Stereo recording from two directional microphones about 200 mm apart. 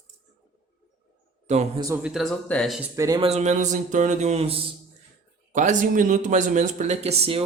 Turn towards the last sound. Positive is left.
turn(degrees=-30)  # may be behind; listen again after turning